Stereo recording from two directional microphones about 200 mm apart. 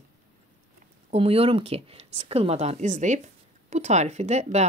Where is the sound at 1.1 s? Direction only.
30° right (ahead or behind).